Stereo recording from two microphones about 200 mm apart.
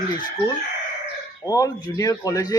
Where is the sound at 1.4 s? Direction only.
15° left (ahead or behind).